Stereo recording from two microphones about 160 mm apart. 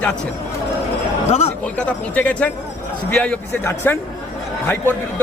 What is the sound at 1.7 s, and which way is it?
A man's voice, 10° left (ahead or behind).